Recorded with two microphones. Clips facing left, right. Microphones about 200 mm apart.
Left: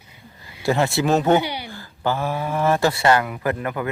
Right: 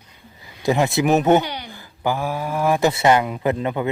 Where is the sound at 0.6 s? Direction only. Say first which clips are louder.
Right 1 dB; 15° right (ahead or behind).